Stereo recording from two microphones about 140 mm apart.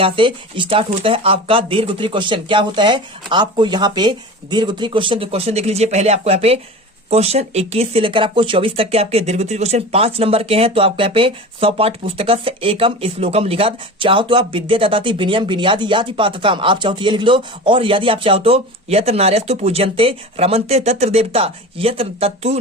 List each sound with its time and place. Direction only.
0.0 s speech: 35° right (ahead or behind)